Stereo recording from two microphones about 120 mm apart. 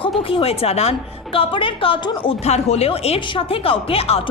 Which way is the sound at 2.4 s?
65° left (ahead or behind).